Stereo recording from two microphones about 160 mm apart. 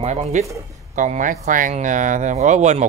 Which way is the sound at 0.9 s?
55° right (ahead or behind).